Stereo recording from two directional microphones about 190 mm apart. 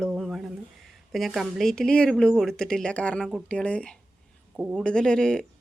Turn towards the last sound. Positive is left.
turn(degrees=5)  # may be behind; listen again after turning